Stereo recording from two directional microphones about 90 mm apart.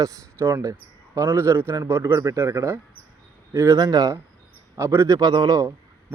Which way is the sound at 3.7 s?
45° right (ahead or behind).